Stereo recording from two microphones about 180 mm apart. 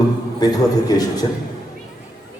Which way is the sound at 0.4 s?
20° left (ahead or behind).